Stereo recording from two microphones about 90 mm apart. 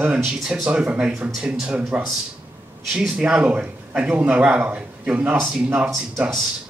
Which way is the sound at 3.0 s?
10° right (ahead or behind).